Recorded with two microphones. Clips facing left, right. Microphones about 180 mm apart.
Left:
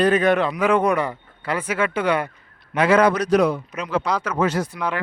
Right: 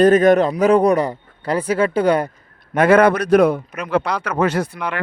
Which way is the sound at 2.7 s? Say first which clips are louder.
Right 4 dB; 55° right (ahead or behind).